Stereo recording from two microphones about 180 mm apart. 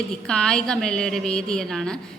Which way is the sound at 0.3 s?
5° left (ahead or behind).